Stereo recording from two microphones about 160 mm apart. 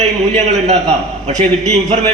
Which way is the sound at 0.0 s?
45° right (ahead or behind).